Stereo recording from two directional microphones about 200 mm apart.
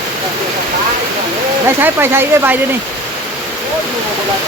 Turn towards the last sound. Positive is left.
turn(degrees=-10)  # may be behind; listen again after turning